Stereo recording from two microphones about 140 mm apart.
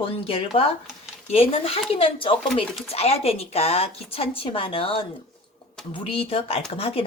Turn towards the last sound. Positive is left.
turn(degrees=45)  # may be behind; listen again after turning